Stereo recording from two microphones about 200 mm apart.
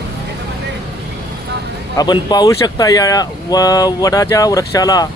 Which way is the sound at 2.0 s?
20° left (ahead or behind).